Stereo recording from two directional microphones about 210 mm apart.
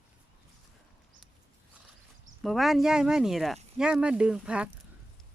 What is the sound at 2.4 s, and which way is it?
Speech, centre (ahead or behind).